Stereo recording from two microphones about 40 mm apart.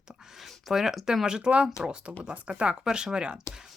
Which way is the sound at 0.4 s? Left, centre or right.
Centre.